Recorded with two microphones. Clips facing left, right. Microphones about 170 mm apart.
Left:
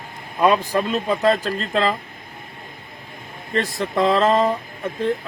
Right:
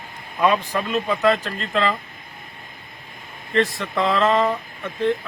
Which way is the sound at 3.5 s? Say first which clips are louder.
Even; 40° left (ahead or behind).